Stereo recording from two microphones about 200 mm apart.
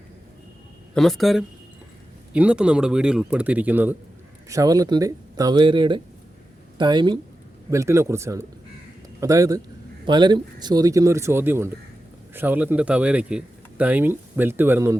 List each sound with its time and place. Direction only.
0.9 s speech: centre (ahead or behind)